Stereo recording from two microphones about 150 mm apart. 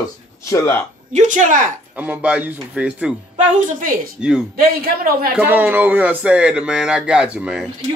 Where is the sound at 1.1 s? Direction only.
55° right (ahead or behind).